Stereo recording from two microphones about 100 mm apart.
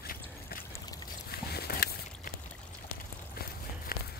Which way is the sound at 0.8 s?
40° left (ahead or behind).